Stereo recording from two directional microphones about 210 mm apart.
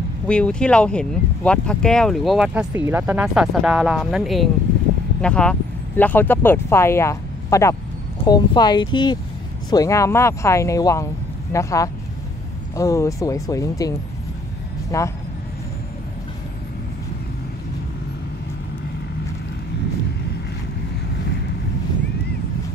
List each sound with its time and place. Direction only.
0.3 s speech: 5° left (ahead or behind)